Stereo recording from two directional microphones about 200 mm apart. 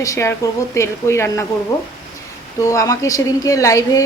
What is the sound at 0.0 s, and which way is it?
Speech, 15° left (ahead or behind).